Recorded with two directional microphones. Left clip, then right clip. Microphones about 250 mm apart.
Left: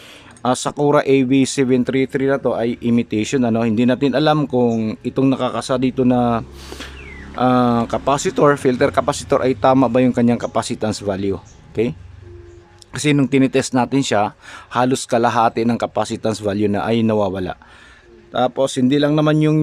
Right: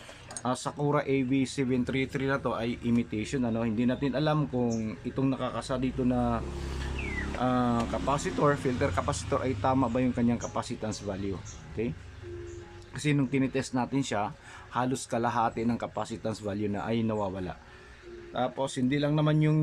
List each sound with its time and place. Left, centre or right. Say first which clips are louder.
0.4 s speech: left 14 dB; left